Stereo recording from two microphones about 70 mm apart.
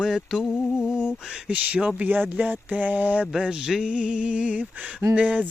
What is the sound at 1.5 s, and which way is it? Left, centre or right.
Speech, centre.